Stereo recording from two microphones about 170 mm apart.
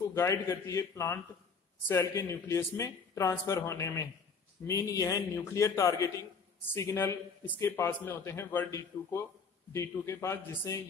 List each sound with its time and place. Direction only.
0.1 s a man's voice: 15° left (ahead or behind)